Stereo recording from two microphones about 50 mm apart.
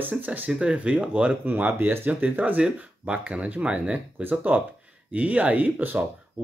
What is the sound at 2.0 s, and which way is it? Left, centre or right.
Speech, right.